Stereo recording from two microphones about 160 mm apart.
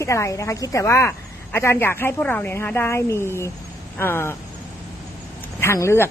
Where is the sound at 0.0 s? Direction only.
20° left (ahead or behind).